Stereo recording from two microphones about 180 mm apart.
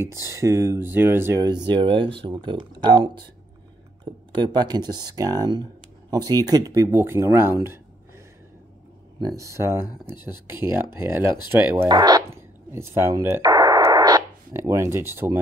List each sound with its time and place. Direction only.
0.0 s speech: 15° right (ahead or behind)
9.2 s speech: 15° right (ahead or behind)
11.9 s a sound: 20° right (ahead or behind)